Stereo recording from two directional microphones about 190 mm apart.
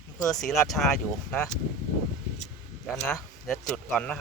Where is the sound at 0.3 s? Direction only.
Centre (ahead or behind).